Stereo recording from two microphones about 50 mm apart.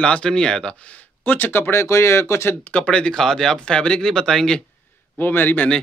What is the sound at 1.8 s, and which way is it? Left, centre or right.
Speech, left.